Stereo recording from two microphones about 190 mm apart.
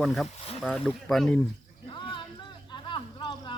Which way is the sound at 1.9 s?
25° left (ahead or behind).